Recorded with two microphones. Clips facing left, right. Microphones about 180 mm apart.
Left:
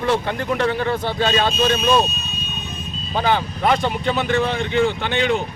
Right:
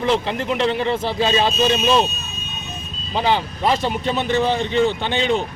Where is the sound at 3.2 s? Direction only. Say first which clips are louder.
Even; 25° right (ahead or behind).